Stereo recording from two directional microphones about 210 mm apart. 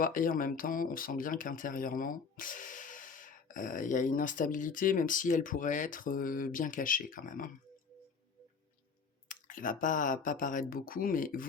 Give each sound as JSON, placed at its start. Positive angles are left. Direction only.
{"t": 0.0, "sound": "speech", "side_deg": 40}
{"t": 9.3, "sound": "speech", "side_deg": 40}